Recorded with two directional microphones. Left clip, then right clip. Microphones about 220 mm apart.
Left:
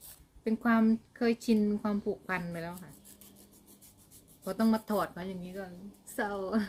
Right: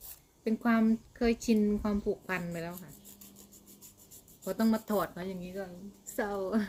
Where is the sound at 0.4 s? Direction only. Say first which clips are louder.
Left 1 dB; centre (ahead or behind).